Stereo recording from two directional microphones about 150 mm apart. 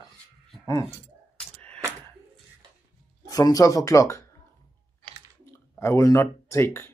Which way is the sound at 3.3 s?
25° left (ahead or behind).